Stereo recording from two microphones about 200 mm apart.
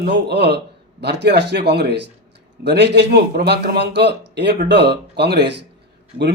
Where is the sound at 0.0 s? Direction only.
55° right (ahead or behind).